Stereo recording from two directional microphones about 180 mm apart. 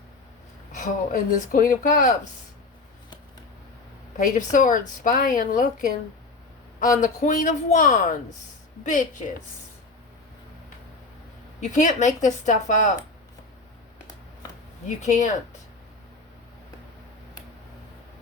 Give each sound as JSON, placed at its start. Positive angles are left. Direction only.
{"t": 0.8, "sound": "a woman's voice", "side_deg": 45}
{"t": 4.2, "sound": "a woman's voice", "side_deg": 45}
{"t": 11.6, "sound": "a woman's voice", "side_deg": 45}
{"t": 14.8, "sound": "a woman's voice", "side_deg": 40}